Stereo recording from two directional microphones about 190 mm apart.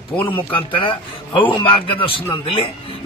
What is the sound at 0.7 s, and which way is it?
Speech, 25° left (ahead or behind).